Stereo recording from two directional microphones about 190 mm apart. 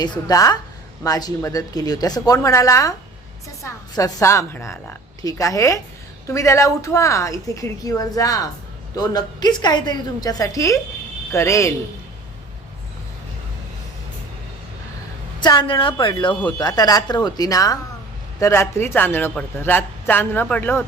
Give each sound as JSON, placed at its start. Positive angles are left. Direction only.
{"t": 0.0, "sound": "speech", "side_deg": 20}
{"t": 15.4, "sound": "speech", "side_deg": 25}